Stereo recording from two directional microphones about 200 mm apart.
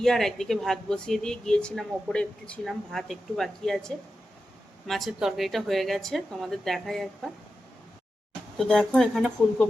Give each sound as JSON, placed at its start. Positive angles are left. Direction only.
{"t": 0.0, "sound": "speech", "side_deg": 0}
{"t": 8.5, "sound": "speech", "side_deg": 0}